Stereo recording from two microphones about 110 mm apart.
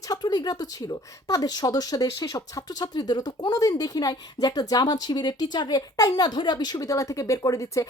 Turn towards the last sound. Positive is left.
turn(degrees=30)  # may be behind; listen again after turning